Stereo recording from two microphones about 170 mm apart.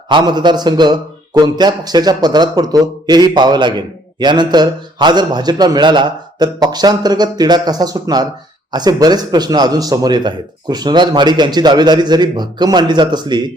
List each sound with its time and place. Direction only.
0.1 s a man's voice: 25° right (ahead or behind)